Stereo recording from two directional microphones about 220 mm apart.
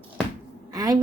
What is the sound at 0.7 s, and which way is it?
Speech, 15° right (ahead or behind).